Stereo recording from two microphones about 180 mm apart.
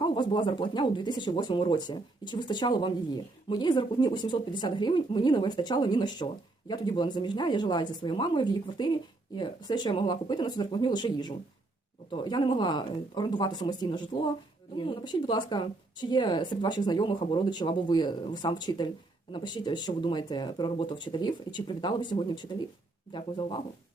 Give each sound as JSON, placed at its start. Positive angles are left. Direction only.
{"t": 0.0, "sound": "speech", "side_deg": 25}